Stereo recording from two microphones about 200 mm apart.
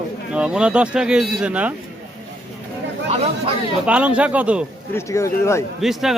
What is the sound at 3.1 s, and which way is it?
Speech, 30° right (ahead or behind).